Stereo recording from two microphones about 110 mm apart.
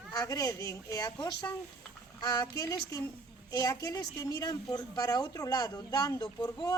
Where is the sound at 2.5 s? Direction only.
35° left (ahead or behind).